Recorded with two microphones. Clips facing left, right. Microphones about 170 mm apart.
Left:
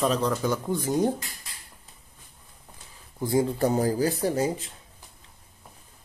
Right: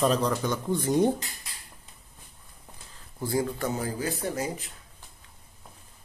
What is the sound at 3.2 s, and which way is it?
Speech, 20° left (ahead or behind).